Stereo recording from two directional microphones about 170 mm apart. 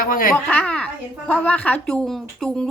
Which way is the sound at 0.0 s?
55° left (ahead or behind).